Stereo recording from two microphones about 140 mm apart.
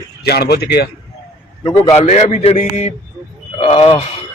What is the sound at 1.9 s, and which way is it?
A man's voice, 50° left (ahead or behind).